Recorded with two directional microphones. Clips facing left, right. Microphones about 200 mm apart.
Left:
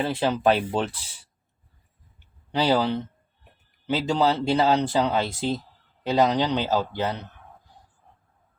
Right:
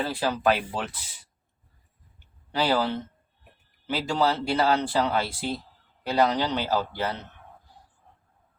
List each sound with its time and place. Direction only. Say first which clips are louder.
0.0 s speech: left 3 dB; 25° left (ahead or behind)
2.5 s speech: left 3 dB; 20° left (ahead or behind)